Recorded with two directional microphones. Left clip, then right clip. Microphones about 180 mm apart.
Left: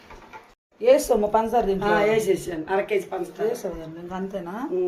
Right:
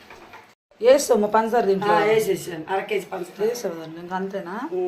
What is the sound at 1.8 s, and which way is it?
Speech, 45° left (ahead or behind).